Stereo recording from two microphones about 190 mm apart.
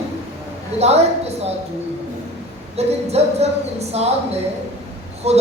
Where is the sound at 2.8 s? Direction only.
35° right (ahead or behind).